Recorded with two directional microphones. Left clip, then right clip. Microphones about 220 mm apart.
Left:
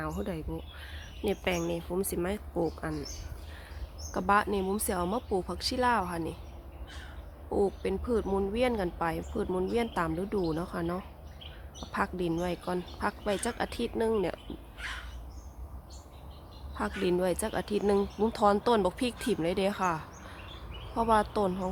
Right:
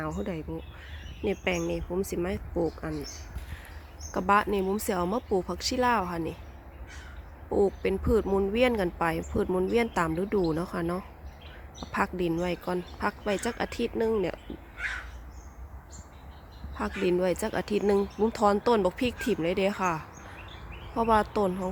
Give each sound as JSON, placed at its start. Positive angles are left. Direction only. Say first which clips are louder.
{"t": 0.0, "sound": "speech", "louder": "right 2 dB", "side_deg": -10}
{"t": 4.1, "sound": "speech", "louder": "right 2 dB", "side_deg": -15}
{"t": 7.5, "sound": "speech", "louder": "right 4 dB", "side_deg": -15}
{"t": 17.0, "sound": "speech", "louder": "right 3 dB", "side_deg": -10}